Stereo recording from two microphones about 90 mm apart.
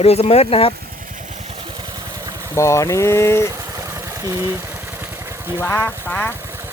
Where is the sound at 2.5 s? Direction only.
35° left (ahead or behind).